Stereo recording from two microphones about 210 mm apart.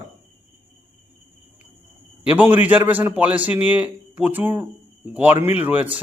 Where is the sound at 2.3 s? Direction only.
10° right (ahead or behind).